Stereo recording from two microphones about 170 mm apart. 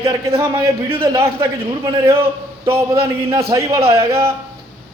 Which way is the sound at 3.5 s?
20° right (ahead or behind).